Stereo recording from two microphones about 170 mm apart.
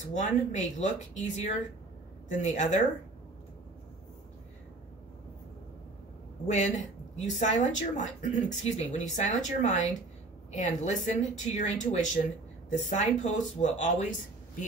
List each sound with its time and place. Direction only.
0.0 s speech: 45° left (ahead or behind)
6.4 s speech: 45° left (ahead or behind)